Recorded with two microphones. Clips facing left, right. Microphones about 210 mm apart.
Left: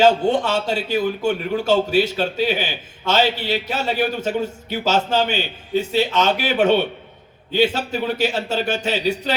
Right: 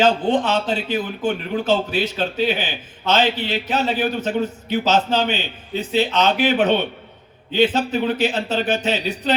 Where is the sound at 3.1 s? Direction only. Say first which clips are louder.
Even; 10° left (ahead or behind).